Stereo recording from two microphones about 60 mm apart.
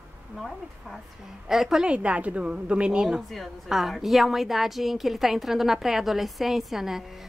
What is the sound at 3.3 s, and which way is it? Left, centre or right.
A woman's voice, centre.